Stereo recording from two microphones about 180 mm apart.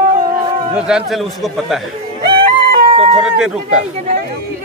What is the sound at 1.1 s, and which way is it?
Speech, centre (ahead or behind).